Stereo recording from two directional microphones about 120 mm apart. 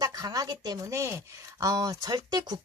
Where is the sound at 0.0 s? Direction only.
30° right (ahead or behind).